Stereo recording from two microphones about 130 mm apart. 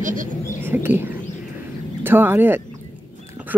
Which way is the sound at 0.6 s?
15° right (ahead or behind).